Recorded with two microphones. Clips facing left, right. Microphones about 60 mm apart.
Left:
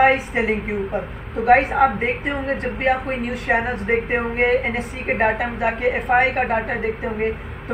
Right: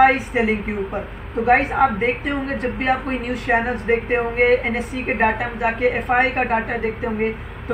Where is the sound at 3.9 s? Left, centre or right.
Centre.